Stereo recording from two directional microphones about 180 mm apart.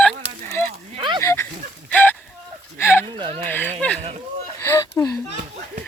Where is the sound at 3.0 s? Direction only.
25° right (ahead or behind).